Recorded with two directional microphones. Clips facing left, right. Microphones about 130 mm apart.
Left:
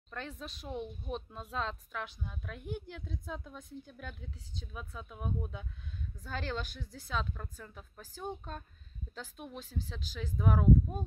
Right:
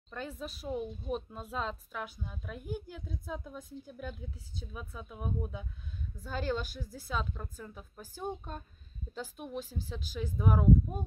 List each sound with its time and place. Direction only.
0.1 s speech: 10° right (ahead or behind)